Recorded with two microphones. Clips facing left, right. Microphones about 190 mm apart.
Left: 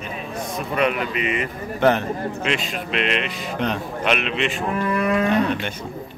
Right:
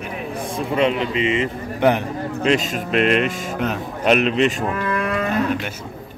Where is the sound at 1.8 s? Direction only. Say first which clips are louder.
Right 1 dB; 15° right (ahead or behind).